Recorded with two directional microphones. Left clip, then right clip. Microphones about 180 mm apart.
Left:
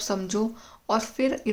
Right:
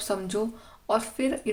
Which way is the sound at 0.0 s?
25° left (ahead or behind).